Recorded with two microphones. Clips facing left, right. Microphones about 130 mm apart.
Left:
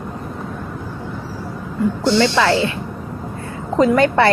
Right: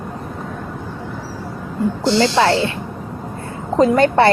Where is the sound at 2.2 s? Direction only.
25° right (ahead or behind).